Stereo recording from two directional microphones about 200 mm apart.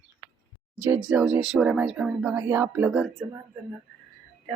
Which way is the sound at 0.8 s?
10° right (ahead or behind).